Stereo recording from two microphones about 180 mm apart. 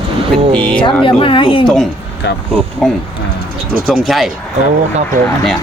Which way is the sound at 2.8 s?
Centre (ahead or behind).